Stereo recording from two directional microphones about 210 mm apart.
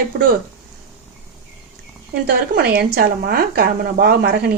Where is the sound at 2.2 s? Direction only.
45° right (ahead or behind).